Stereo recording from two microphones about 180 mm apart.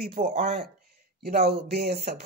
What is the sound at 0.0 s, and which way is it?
Speech, 55° right (ahead or behind).